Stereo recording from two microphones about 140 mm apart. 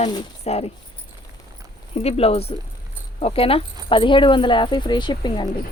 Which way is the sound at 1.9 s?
45° left (ahead or behind).